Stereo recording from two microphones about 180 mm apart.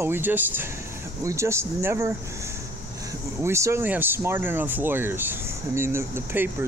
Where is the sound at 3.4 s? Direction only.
15° right (ahead or behind).